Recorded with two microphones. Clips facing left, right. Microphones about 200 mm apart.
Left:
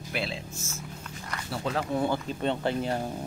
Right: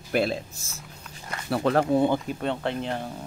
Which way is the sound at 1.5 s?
65° right (ahead or behind).